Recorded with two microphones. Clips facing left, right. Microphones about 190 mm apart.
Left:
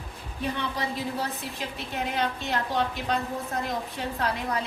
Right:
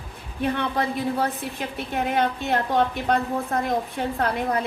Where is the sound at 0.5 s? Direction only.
55° right (ahead or behind).